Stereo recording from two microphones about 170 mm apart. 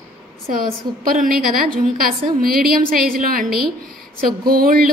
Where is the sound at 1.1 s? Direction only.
55° right (ahead or behind).